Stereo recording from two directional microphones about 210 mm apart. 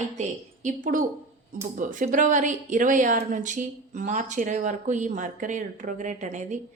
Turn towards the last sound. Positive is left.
turn(degrees=-35)  # may be behind; listen again after turning